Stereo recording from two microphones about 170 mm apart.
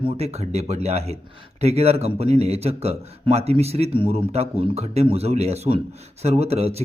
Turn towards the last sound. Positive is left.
turn(degrees=-35)  # may be behind; listen again after turning